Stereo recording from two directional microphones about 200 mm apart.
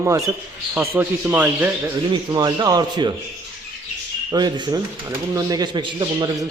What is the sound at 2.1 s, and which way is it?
Speech, 20° right (ahead or behind).